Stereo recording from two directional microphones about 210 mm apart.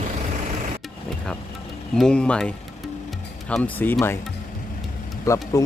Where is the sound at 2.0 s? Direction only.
5° left (ahead or behind).